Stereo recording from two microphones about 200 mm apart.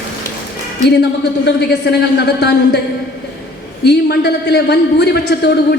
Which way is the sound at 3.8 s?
55° left (ahead or behind).